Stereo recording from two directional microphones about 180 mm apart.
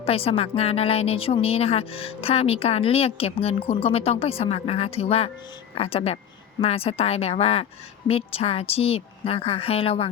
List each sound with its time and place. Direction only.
0.0 s a woman's voice: 30° left (ahead or behind)